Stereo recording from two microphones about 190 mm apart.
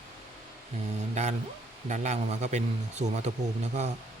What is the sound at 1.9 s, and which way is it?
Speech, 35° right (ahead or behind).